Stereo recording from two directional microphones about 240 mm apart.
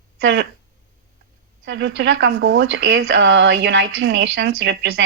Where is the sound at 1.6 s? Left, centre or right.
Right.